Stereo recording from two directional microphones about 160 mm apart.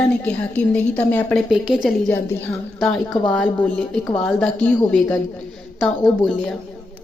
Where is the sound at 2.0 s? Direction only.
15° left (ahead or behind).